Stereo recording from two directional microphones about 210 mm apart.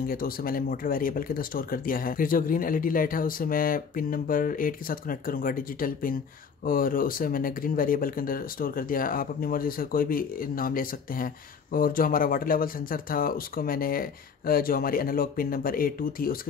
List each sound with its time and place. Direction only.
0.0 s speech: 45° left (ahead or behind)